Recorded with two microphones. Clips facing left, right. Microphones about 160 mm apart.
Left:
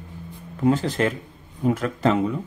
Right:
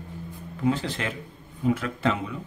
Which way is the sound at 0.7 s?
45° left (ahead or behind).